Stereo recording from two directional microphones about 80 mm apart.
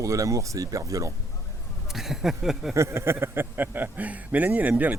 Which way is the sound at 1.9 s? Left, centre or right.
Centre.